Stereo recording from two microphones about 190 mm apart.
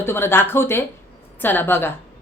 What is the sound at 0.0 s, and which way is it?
Speech, 10° left (ahead or behind).